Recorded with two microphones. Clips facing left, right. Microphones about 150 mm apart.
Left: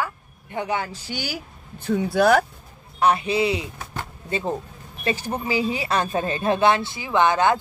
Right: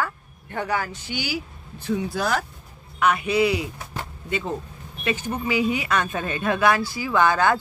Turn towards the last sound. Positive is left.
turn(degrees=20)  # may be behind; listen again after turning